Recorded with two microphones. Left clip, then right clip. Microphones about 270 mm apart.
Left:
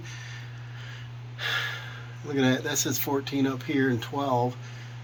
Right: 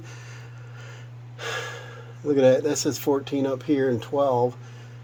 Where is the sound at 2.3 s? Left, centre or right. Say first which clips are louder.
Right 7 dB; right.